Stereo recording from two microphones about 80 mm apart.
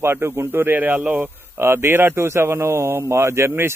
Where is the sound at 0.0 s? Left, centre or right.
Right.